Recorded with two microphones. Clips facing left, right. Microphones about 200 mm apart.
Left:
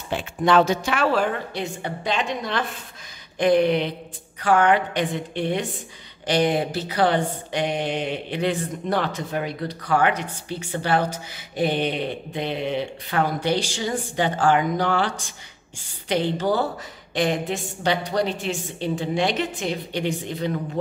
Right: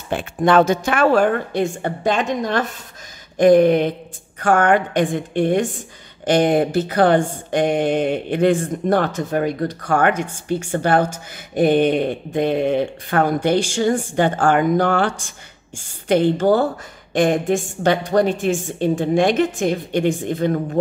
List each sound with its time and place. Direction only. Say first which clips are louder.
0.1 s speech: right 4 dB; 50° right (ahead or behind)